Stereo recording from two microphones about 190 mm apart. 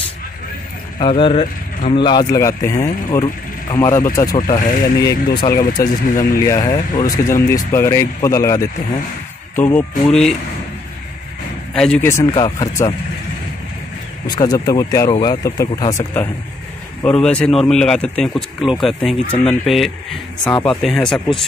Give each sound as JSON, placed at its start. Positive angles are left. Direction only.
{"t": 0.9, "sound": "speech", "side_deg": 30}
{"t": 11.7, "sound": "speech", "side_deg": 5}
{"t": 12.4, "sound": "speech", "side_deg": 25}
{"t": 14.2, "sound": "speech", "side_deg": 20}